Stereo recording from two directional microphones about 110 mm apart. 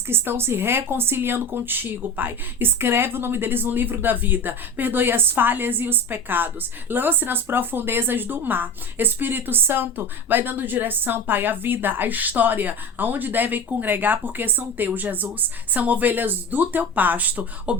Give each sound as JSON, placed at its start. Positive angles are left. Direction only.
{"t": 0.1, "sound": "speech", "side_deg": -20}